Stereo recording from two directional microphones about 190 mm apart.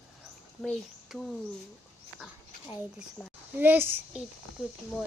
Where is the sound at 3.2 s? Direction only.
5° left (ahead or behind).